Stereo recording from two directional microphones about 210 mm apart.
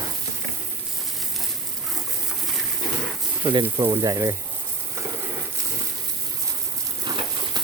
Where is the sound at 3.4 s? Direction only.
20° right (ahead or behind).